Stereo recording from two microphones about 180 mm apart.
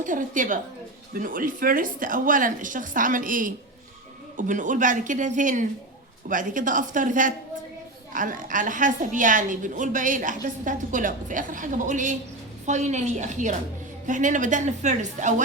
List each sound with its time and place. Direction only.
0.0 s a woman's voice: 45° right (ahead or behind)